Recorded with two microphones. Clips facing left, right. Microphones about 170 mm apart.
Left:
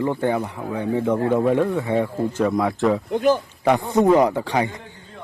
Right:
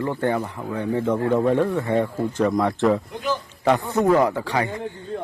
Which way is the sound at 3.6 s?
15° left (ahead or behind).